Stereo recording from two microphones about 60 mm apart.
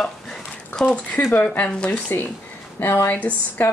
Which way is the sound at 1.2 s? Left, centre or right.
Left.